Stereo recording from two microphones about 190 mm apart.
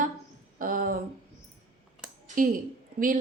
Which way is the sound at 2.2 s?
45° right (ahead or behind).